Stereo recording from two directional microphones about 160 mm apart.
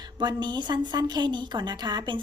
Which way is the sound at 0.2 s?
30° right (ahead or behind).